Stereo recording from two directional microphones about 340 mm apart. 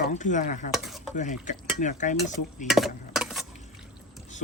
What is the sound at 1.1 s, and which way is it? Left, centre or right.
Speech, left.